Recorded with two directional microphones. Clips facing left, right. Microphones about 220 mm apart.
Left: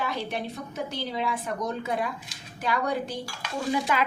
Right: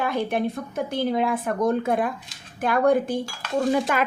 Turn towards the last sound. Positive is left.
turn(degrees=-50)  # may be behind; listen again after turning